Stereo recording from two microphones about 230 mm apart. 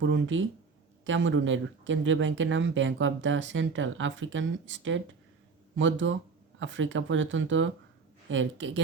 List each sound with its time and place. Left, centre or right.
0.0 s a woman's voice: right